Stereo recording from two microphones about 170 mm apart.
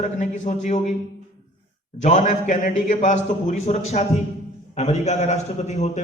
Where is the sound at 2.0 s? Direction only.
45° left (ahead or behind).